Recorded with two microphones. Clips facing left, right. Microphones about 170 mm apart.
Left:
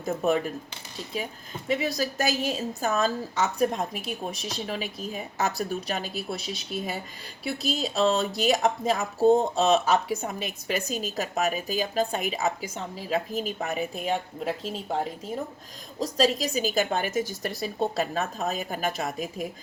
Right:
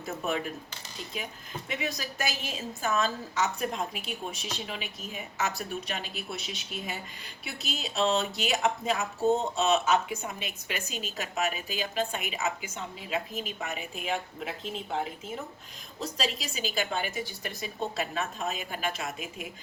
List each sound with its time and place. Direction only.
1.1 s a woman's voice: 35° left (ahead or behind)